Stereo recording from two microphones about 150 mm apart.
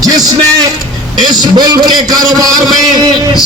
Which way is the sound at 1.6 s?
30° right (ahead or behind).